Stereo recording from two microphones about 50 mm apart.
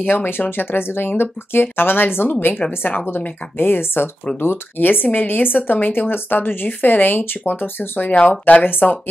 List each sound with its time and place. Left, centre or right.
0.0 s speech: left
3.5 s speech: left
8.1 s speech: left
8.6 s speech: left